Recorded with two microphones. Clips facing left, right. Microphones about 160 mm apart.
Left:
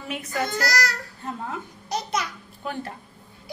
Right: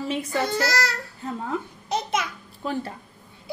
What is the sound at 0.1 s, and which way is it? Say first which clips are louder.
Speech: right 1 dB; 30° right (ahead or behind).